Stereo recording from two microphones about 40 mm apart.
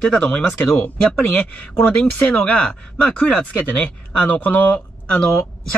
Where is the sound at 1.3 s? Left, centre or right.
Left.